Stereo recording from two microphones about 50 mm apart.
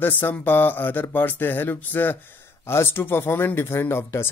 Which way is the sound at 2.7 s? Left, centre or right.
Left.